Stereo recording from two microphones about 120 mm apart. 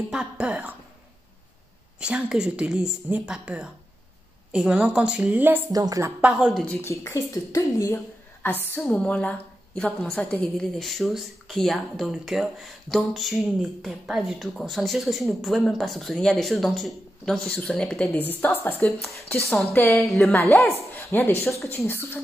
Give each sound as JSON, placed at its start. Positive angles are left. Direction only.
{"t": 0.1, "sound": "a woman's voice", "side_deg": -10}
{"t": 2.0, "sound": "a woman's voice", "side_deg": -10}
{"t": 5.7, "sound": "a woman's voice", "side_deg": -30}
{"t": 6.2, "sound": "a woman's voice", "side_deg": -10}
{"t": 6.5, "sound": "speech", "side_deg": 5}
{"t": 6.8, "sound": "a woman's voice", "side_deg": 25}
{"t": 20.1, "sound": "speech", "side_deg": 5}
{"t": 20.3, "sound": "speech", "side_deg": 20}